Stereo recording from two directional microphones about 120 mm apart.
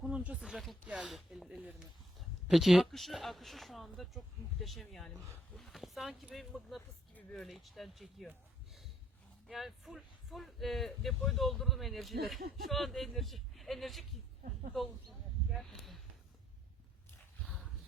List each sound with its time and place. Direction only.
0.0 s speech: 10° right (ahead or behind)
7.1 s speech: 10° left (ahead or behind)
9.5 s speech: centre (ahead or behind)
17.4 s dog: centre (ahead or behind)